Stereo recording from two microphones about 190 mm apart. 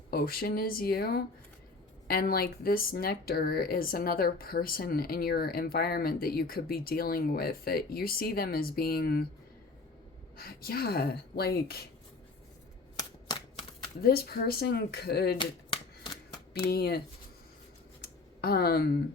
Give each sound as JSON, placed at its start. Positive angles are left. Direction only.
{"t": 0.1, "sound": "speech", "side_deg": 50}
{"t": 10.3, "sound": "speech", "side_deg": 50}
{"t": 14.0, "sound": "speech", "side_deg": 55}
{"t": 15.4, "sound": "shuffling cards", "side_deg": 25}
{"t": 16.6, "sound": "speech", "side_deg": 55}
{"t": 18.3, "sound": "speech", "side_deg": 55}